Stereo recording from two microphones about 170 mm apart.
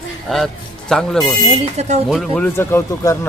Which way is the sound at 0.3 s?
Centre (ahead or behind).